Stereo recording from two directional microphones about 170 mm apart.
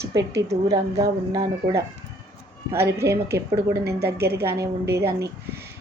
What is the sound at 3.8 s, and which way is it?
Speech, 70° right (ahead or behind).